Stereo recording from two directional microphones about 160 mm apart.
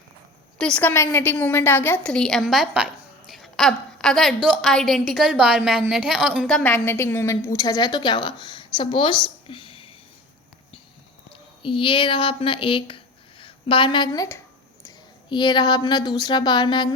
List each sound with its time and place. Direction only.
0.6 s a woman's voice: 10° left (ahead or behind)
6.6 s a woman's voice: 10° left (ahead or behind); by 9.9 s 35° left (ahead or behind)
11.3 s a woman's voice: 35° left (ahead or behind)